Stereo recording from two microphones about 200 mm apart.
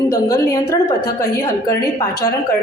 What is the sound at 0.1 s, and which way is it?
Speech, 15° left (ahead or behind).